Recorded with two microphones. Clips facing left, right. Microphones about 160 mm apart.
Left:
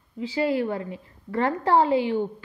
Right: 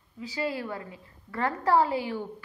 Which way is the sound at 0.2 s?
25° left (ahead or behind).